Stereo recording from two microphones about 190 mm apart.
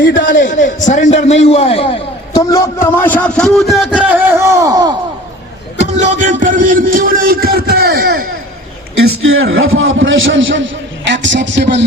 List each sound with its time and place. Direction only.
0.2 s a man's voice: 45° left (ahead or behind)
2.5 s a man's voice: 15° left (ahead or behind); by 4.9 s 20° right (ahead or behind)
5.9 s music: 35° right (ahead or behind); by 8.3 s 55° right (ahead or behind)
9.0 s a man's voice: 90° right; by 11.8 s 70° right (ahead or behind)